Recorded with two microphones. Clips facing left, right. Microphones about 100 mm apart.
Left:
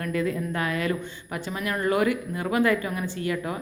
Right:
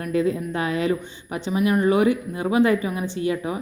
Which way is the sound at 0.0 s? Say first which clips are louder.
Right 4 dB; 25° right (ahead or behind).